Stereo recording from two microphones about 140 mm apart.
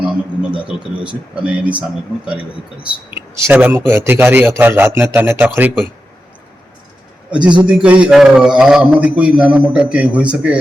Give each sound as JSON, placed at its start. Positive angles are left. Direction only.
{"t": 1.0, "sound": "a man's voice", "side_deg": -10}
{"t": 3.1, "sound": "a man's voice", "side_deg": -15}
{"t": 7.3, "sound": "a man's voice", "side_deg": -35}
{"t": 7.6, "sound": "a man's voice", "side_deg": -10}